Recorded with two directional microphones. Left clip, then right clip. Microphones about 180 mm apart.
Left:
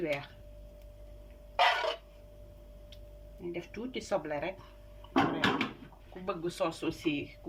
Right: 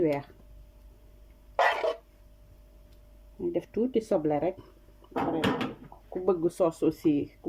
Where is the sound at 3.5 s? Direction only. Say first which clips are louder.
Right 12 dB; 45° right (ahead or behind).